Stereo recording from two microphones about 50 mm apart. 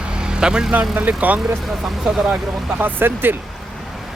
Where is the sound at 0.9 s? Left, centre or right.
Right.